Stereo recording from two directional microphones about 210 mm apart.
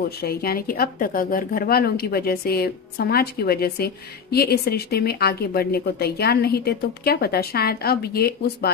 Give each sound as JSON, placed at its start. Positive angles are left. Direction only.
{"t": 0.2, "sound": "speech", "side_deg": 45}